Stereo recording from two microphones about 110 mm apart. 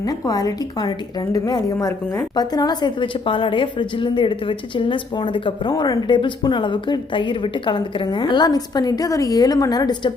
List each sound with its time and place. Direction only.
0.0 s a woman's voice: 35° left (ahead or behind)